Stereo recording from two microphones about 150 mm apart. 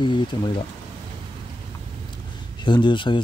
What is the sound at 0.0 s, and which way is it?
Speech, 30° left (ahead or behind).